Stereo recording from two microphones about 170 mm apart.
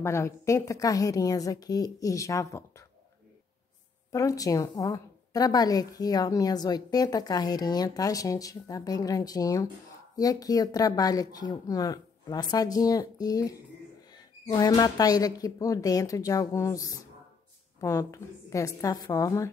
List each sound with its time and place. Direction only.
0.0 s a woman's voice: 15° left (ahead or behind)
4.1 s a woman's voice: 20° left (ahead or behind)